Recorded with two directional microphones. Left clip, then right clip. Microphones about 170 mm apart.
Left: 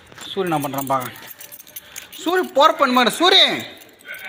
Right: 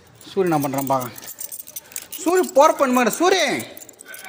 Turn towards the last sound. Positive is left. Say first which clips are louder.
# left 4 dB
turn(degrees=-25)  # may be behind; listen again after turning